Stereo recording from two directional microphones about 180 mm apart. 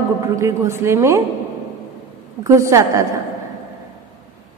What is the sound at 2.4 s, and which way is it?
Speech, 15° right (ahead or behind).